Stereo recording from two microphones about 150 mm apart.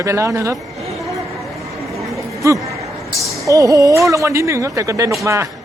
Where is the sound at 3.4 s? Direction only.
20° right (ahead or behind).